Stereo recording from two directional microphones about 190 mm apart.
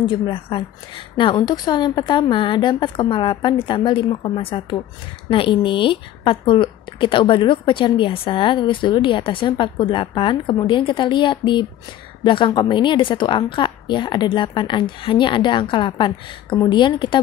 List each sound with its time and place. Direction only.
0.0 s a woman's voice: 25° left (ahead or behind)